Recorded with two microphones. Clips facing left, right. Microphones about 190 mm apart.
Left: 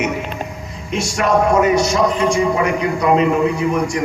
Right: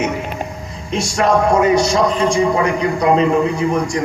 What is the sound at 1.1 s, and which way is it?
A man's voice, 30° right (ahead or behind).